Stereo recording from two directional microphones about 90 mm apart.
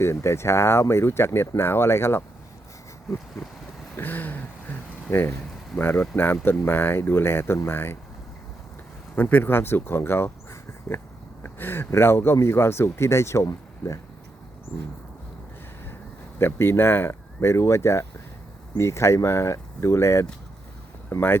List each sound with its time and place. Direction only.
0.0 s speech: 30° left (ahead or behind)
3.9 s a sound: 20° left (ahead or behind)
5.7 s speech: 20° left (ahead or behind)
9.1 s speech: 20° left (ahead or behind)
16.4 s speech: 25° left (ahead or behind)